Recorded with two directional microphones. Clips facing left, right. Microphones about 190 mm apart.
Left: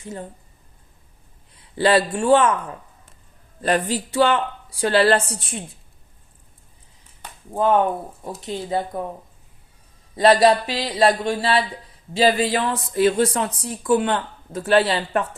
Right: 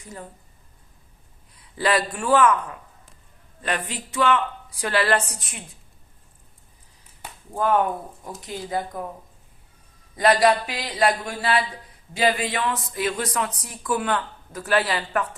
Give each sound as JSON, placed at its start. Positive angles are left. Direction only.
{"t": 0.0, "sound": "speech", "side_deg": 25}
{"t": 1.7, "sound": "speech", "side_deg": 30}
{"t": 7.5, "sound": "speech", "side_deg": 25}
{"t": 10.2, "sound": "speech", "side_deg": 30}